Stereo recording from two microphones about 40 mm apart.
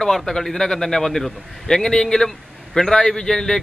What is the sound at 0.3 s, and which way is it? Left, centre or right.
A man's voice, centre.